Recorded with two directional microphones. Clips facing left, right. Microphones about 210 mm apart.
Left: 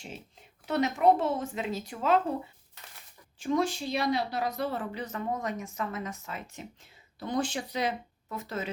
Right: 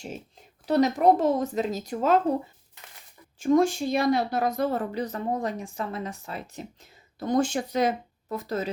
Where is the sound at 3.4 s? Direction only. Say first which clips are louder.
Right 7 dB; 45° right (ahead or behind).